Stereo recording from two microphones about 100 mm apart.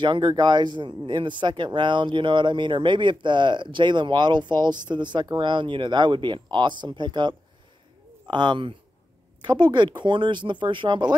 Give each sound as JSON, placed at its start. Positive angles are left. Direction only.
{"t": 0.0, "sound": "speech", "side_deg": -50}